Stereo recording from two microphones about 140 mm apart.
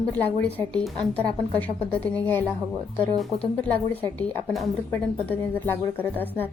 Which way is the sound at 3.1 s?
Centre (ahead or behind).